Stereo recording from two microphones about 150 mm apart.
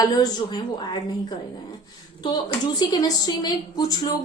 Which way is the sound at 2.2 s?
30° left (ahead or behind).